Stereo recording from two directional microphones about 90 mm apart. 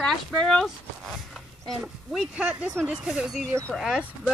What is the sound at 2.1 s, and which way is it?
A woman's voice, 10° right (ahead or behind).